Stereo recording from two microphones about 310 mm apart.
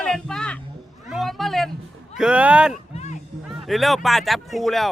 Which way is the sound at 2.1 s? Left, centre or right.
Centre.